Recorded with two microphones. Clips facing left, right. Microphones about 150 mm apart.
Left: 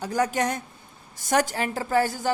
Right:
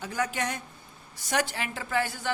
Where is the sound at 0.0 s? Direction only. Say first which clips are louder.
Left 6 dB; 40° left (ahead or behind).